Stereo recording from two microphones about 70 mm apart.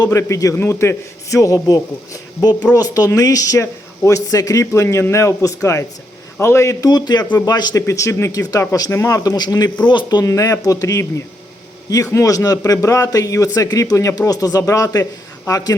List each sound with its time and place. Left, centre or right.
0.1 s a man's voice: left
0.5 s a man's voice: left
4.6 s a man's voice: left
6.8 s a man's voice: left
7.8 s a man's voice: left
9.3 s speech: left
9.8 s speech: left
10.2 s a man's voice: left
12.1 s a man's voice: left
13.7 s speech: left
13.9 s speech: left